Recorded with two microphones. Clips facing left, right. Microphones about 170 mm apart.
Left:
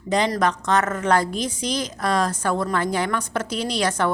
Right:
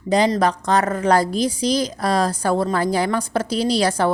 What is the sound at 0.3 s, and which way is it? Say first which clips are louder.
A woman's voice: right 3 dB; 35° right (ahead or behind).